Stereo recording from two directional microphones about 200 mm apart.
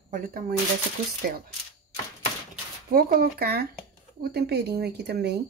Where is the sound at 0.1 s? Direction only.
45° right (ahead or behind).